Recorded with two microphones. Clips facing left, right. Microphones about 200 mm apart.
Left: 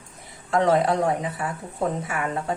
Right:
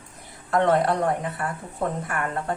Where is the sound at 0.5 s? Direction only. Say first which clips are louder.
Left 1 dB; centre (ahead or behind).